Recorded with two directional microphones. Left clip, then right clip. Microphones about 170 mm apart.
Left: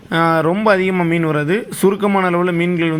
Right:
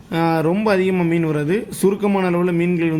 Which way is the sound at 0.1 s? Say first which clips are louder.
Left 4 dB; 25° left (ahead or behind).